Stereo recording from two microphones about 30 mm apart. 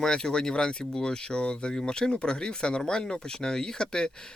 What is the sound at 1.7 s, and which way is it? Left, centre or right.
Speech, left.